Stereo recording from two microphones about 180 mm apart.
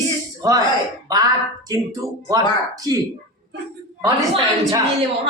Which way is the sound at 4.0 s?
25° right (ahead or behind).